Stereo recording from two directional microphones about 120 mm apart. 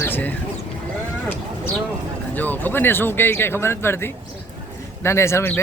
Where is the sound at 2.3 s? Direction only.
15° left (ahead or behind).